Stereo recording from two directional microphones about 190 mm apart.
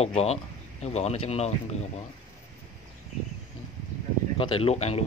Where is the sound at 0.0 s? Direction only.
35° left (ahead or behind).